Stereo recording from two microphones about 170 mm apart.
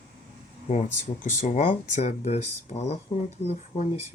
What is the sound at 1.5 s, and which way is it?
Speech, 45° left (ahead or behind).